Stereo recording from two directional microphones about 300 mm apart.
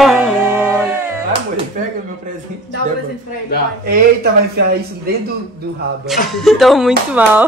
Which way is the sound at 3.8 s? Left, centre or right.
Right.